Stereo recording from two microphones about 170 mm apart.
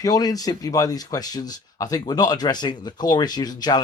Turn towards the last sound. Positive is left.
turn(degrees=25)  # may be behind; listen again after turning